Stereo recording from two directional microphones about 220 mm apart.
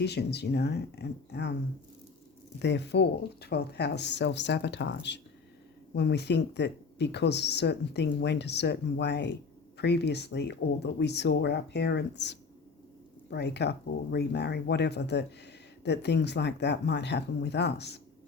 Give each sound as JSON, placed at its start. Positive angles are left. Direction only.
{"t": 0.0, "sound": "speech", "side_deg": 50}
{"t": 2.6, "sound": "speech", "side_deg": 50}